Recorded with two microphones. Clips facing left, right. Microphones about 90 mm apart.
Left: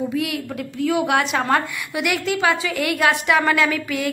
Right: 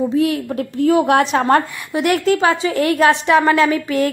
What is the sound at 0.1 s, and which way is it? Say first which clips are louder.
A woman's voice: right 7 dB; 35° right (ahead or behind).